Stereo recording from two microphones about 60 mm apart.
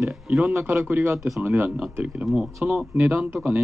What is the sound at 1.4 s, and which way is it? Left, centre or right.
Speech, right.